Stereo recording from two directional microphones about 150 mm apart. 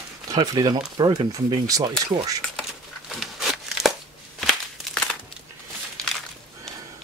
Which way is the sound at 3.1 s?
Centre (ahead or behind).